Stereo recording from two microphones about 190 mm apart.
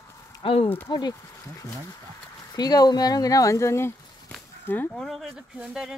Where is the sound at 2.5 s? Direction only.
20° left (ahead or behind).